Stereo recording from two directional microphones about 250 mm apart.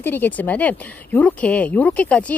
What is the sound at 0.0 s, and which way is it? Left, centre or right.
Speech, centre.